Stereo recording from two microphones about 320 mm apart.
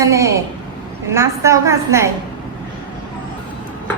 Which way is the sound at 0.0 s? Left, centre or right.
Centre.